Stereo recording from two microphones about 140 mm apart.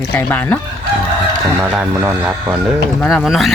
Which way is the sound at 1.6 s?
10° right (ahead or behind).